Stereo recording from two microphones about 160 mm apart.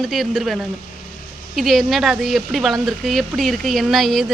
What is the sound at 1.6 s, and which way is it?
Speech, centre (ahead or behind).